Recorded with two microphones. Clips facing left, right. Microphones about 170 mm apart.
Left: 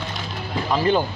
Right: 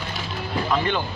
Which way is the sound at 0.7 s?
35° left (ahead or behind).